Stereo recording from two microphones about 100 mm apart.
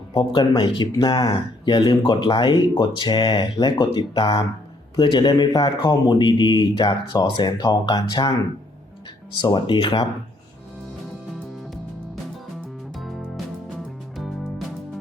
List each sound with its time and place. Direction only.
0.2 s speech: 40° left (ahead or behind)
0.6 s speech: 60° left (ahead or behind)
1.3 s speech: 45° left (ahead or behind)
9.4 s speech: 50° left (ahead or behind)
13.0 s music: centre (ahead or behind)